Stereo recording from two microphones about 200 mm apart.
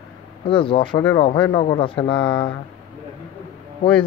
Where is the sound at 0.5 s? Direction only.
25° left (ahead or behind).